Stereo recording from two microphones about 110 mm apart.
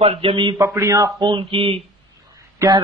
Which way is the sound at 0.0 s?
60° right (ahead or behind).